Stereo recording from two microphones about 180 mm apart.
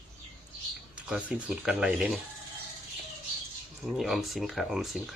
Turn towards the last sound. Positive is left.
turn(degrees=0)  # may be behind; listen again after turning